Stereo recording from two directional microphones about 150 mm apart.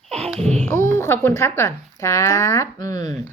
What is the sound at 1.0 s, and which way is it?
Speech, 15° left (ahead or behind).